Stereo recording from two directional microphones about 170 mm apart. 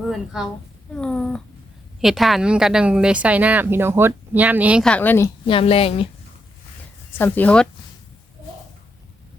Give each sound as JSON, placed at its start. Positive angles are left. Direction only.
{"t": 0.3, "sound": "speech", "side_deg": -5}
{"t": 4.8, "sound": "a woman's voice", "side_deg": 5}
{"t": 5.5, "sound": "a woman's voice", "side_deg": 35}
{"t": 7.2, "sound": "a woman's voice", "side_deg": 10}